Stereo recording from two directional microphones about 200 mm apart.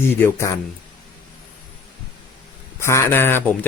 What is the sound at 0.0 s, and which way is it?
Speech, 10° left (ahead or behind).